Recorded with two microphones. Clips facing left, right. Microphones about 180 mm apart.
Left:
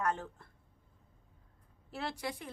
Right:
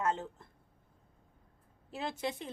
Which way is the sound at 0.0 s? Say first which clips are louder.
Right 1 dB; 20° right (ahead or behind).